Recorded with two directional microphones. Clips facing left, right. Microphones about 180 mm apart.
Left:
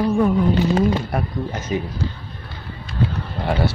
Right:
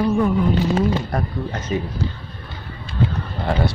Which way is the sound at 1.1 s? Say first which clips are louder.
Even; 10° left (ahead or behind).